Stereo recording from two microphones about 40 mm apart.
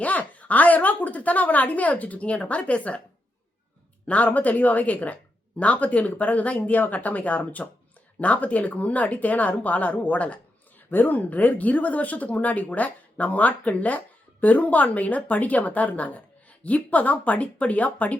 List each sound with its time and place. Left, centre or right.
0.0 s a woman's voice: left
4.0 s a woman's voice: left
10.9 s a woman's voice: left